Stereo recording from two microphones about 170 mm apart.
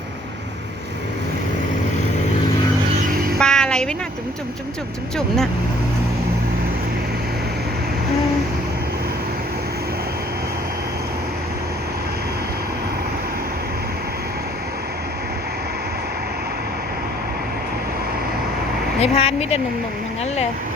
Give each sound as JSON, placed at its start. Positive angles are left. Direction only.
{"t": 3.1, "sound": "train", "side_deg": -60}
{"t": 3.3, "sound": "music", "side_deg": 5}
{"t": 18.9, "sound": "speech", "side_deg": 35}